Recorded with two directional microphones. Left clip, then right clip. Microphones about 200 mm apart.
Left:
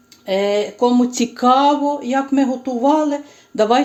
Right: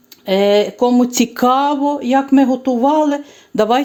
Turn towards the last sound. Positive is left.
turn(degrees=-45)  # may be behind; listen again after turning